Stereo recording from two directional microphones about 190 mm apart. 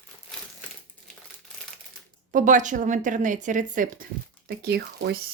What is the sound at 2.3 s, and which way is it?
Speech, 45° right (ahead or behind).